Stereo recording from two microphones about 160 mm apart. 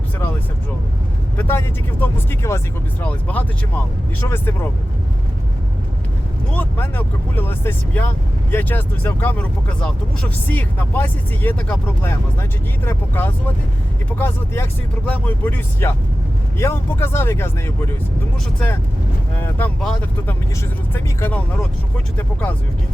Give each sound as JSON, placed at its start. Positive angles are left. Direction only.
{"t": 1.4, "sound": "speech", "side_deg": 10}
{"t": 6.5, "sound": "speech", "side_deg": 10}
{"t": 19.4, "sound": "speech", "side_deg": 10}